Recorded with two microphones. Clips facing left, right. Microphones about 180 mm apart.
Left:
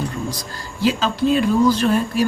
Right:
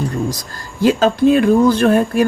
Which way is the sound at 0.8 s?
50° right (ahead or behind).